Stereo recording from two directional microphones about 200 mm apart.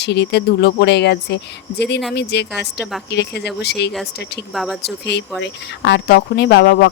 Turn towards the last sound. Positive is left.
turn(degrees=55)  # may be behind; listen again after turning